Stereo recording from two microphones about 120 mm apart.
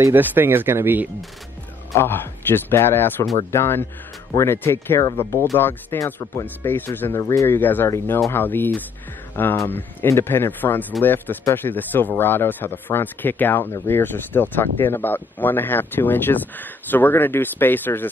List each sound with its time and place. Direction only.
0.0 s speech: 15° right (ahead or behind)
2.0 s speech: 20° left (ahead or behind)